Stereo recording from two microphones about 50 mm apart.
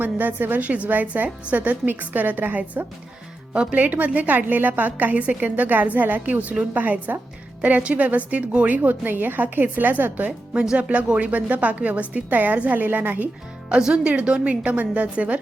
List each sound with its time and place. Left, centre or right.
0.0 s a woman's voice: right
3.5 s speech: right
3.8 s a woman's voice: right
10.5 s a woman's voice: centre; by 13.3 s right
13.7 s a woman's voice: centre